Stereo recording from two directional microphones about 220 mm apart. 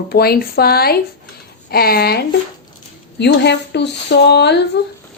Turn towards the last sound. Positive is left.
turn(degrees=45)  # may be behind; listen again after turning